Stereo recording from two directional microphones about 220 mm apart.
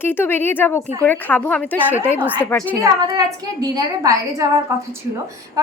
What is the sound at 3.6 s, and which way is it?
A woman's voice, 15° right (ahead or behind).